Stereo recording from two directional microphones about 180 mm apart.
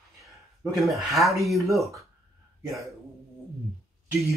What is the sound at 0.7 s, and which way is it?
Speech, centre (ahead or behind).